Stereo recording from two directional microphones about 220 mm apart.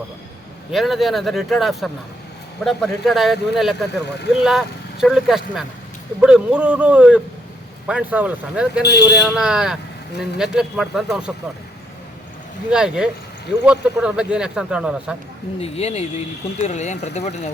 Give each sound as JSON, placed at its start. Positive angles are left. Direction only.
{"t": 0.7, "sound": "speech", "side_deg": 0}
{"t": 12.7, "sound": "speech", "side_deg": -5}
{"t": 15.5, "sound": "speech", "side_deg": 25}